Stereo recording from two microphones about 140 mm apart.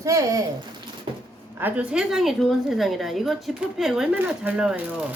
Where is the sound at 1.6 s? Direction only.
10° right (ahead or behind).